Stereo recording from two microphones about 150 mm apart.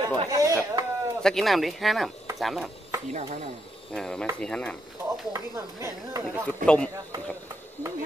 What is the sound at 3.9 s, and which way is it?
Speech, 5° left (ahead or behind).